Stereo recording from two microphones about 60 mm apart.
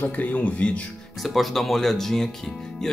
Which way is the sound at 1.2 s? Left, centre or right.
Centre.